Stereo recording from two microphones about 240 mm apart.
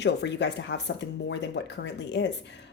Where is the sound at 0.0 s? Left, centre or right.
Left.